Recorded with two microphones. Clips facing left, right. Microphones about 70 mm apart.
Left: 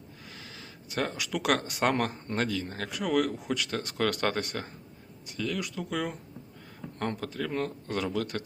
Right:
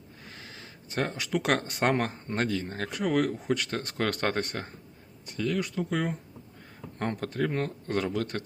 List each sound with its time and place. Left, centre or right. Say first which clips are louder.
0.3 s a sound: right 1 dB; right
1.9 s speech: right 1 dB; right
7.2 s speech: right 3 dB; right
7.4 s speech: right 2 dB; right